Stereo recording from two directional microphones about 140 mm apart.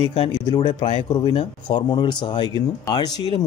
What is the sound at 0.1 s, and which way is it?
Speech, 40° left (ahead or behind).